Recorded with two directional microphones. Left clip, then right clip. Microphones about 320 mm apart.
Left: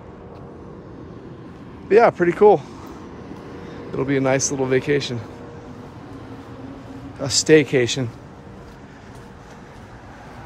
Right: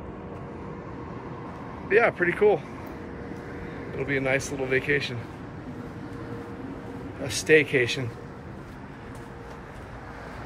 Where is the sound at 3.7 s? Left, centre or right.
Centre.